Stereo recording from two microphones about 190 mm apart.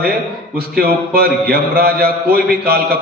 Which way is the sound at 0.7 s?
50° right (ahead or behind).